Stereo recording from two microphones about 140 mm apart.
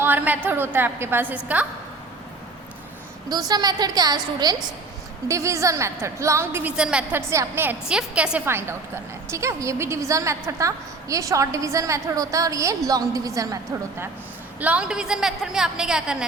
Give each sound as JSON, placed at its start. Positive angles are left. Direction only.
{"t": 0.0, "sound": "a woman's voice", "side_deg": -15}
{"t": 3.2, "sound": "a woman's voice", "side_deg": -30}
{"t": 7.2, "sound": "a woman's voice", "side_deg": -20}
{"t": 14.6, "sound": "a woman's voice", "side_deg": -10}